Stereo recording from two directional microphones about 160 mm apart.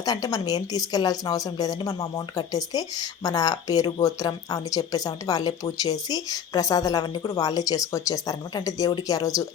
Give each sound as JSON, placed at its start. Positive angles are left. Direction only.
{"t": 0.0, "sound": "a woman's voice", "side_deg": 25}